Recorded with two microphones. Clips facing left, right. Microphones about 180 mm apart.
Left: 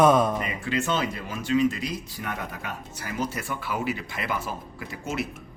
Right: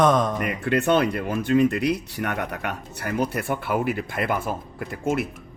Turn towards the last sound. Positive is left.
turn(degrees=-50)  # may be behind; listen again after turning